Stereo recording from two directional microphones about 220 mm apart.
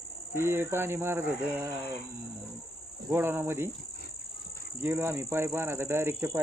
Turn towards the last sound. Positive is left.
turn(degrees=-10)  # may be behind; listen again after turning